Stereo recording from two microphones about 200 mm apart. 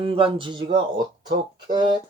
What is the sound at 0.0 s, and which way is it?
Speech, 25° right (ahead or behind).